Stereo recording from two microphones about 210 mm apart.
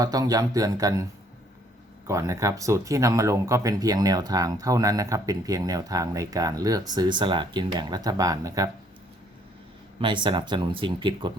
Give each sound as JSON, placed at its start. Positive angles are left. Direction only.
{"t": 0.0, "sound": "speech", "side_deg": -15}
{"t": 2.0, "sound": "speech", "side_deg": -15}
{"t": 10.0, "sound": "speech", "side_deg": -20}